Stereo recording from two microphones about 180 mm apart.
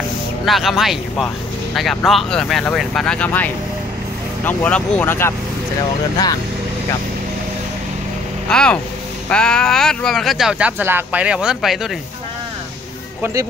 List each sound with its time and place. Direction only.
0.5 s speech: centre (ahead or behind)
8.5 s speech: 5° left (ahead or behind)
13.2 s speech: 15° right (ahead or behind)